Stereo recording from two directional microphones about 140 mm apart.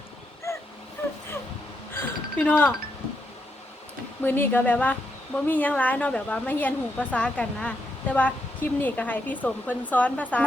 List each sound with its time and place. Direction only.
0.5 s a sound: 20° left (ahead or behind)
2.4 s speech: 10° left (ahead or behind)
4.2 s speech: 15° left (ahead or behind)